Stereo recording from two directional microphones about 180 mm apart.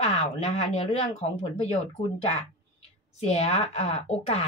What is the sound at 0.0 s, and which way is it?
A woman's voice, 35° left (ahead or behind).